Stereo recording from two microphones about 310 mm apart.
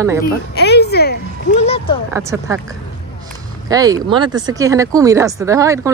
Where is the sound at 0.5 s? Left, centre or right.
Left.